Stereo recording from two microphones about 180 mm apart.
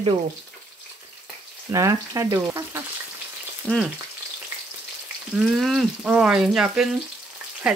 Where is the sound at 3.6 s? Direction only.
Centre (ahead or behind).